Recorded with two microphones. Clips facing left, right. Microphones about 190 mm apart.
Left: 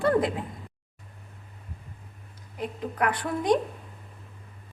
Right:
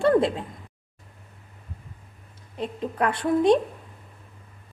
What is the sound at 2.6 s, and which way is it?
Speech, 30° right (ahead or behind).